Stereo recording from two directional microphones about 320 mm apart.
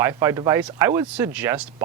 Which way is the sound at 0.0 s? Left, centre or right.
Centre.